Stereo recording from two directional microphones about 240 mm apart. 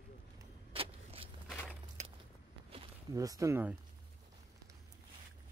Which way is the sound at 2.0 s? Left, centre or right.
Right.